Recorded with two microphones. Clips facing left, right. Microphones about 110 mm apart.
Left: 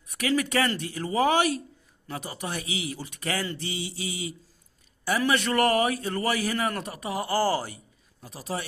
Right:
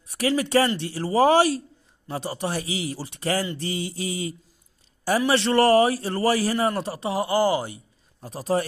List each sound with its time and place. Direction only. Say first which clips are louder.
0.1 s speech: right 4 dB; 30° right (ahead or behind)
3.5 s mantra: right 5 dB; 45° right (ahead or behind)
5.3 s speech: right 6 dB; 30° right (ahead or behind)
8.2 s speech: right 9 dB; 40° right (ahead or behind)